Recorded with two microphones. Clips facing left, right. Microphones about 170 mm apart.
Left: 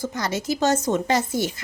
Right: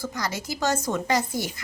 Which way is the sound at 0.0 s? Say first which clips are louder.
Left 4 dB; 25° left (ahead or behind).